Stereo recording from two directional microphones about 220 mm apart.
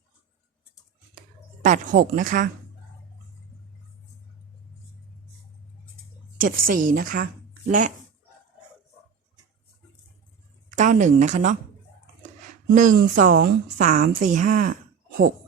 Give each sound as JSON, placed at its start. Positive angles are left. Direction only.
{"t": 1.6, "sound": "a woman's voice", "side_deg": -35}
{"t": 6.3, "sound": "a woman's voice", "side_deg": -40}
{"t": 10.8, "sound": "speech", "side_deg": -35}
{"t": 12.7, "sound": "a woman's voice", "side_deg": -35}